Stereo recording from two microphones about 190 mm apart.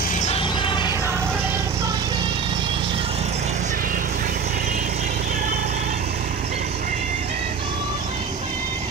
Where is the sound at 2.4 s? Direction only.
25° right (ahead or behind).